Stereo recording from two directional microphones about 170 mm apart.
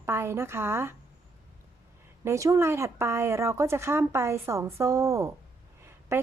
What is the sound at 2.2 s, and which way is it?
A woman's voice, 15° right (ahead or behind).